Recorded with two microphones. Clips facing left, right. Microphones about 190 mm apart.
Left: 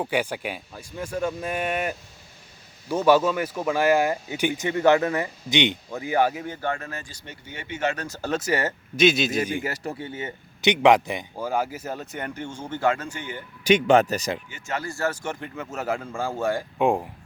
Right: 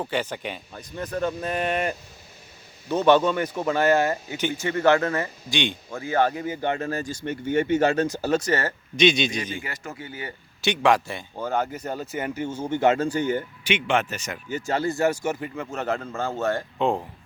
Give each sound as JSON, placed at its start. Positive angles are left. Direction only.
{"t": 0.0, "sound": "a man's voice", "side_deg": 10}
{"t": 6.6, "sound": "speech", "side_deg": -25}
{"t": 6.9, "sound": "speech", "side_deg": -45}
{"t": 8.0, "sound": "speech", "side_deg": -15}
{"t": 8.3, "sound": "a man's voice", "side_deg": 5}
{"t": 9.6, "sound": "speech", "side_deg": 35}
{"t": 12.8, "sound": "speech", "side_deg": -25}
{"t": 13.1, "sound": "speech", "side_deg": -40}
{"t": 13.7, "sound": "speech", "side_deg": 40}
{"t": 14.5, "sound": "a man's voice", "side_deg": -30}